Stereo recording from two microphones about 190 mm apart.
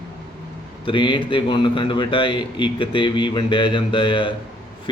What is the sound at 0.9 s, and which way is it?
Speech, 25° left (ahead or behind).